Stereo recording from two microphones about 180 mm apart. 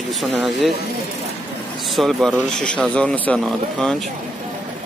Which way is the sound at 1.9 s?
Centre (ahead or behind).